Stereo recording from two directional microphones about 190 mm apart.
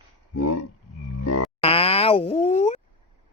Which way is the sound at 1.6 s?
30° left (ahead or behind).